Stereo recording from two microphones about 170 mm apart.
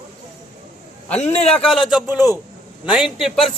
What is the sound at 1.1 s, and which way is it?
Speech, 40° left (ahead or behind).